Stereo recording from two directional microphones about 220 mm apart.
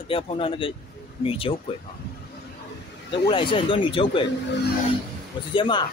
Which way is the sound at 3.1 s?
25° left (ahead or behind).